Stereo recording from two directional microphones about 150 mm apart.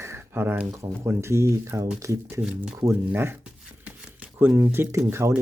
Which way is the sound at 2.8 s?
15° right (ahead or behind).